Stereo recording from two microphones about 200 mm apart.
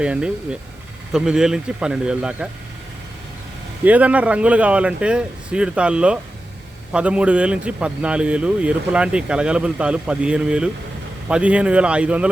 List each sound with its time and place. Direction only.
0.0 s a man's voice: 5° right (ahead or behind)
3.8 s a man's voice: 5° right (ahead or behind)